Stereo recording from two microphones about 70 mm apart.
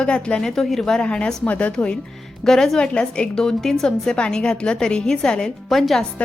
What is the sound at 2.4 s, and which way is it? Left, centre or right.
A woman's voice, centre.